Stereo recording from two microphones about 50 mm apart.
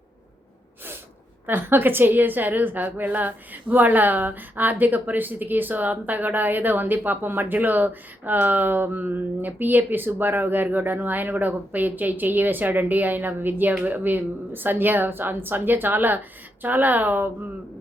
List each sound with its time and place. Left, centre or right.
1.5 s a woman's voice: right